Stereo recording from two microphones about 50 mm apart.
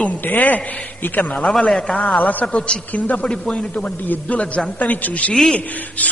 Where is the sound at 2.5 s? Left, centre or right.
Left.